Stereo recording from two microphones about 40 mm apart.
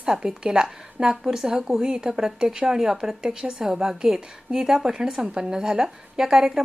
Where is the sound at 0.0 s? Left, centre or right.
Centre.